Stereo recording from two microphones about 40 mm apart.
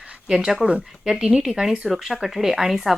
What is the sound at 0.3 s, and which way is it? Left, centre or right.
A woman's voice, centre.